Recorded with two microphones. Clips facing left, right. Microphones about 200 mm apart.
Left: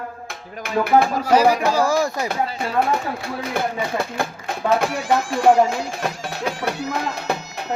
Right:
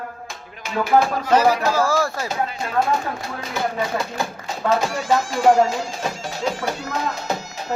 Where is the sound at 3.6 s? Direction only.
55° left (ahead or behind).